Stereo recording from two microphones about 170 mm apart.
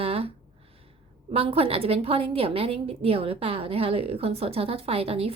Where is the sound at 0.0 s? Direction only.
35° right (ahead or behind).